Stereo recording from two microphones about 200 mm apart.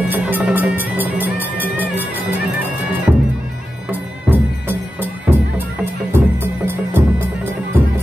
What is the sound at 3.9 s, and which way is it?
Music, 10° right (ahead or behind).